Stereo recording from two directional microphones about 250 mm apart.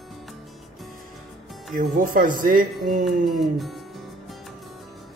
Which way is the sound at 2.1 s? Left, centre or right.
Right.